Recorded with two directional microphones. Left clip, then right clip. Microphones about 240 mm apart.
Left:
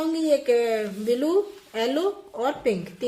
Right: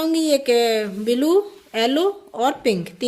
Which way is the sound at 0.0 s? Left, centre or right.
Right.